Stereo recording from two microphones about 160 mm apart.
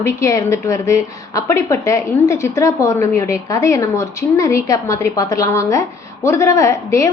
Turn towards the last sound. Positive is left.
turn(degrees=20)  # may be behind; listen again after turning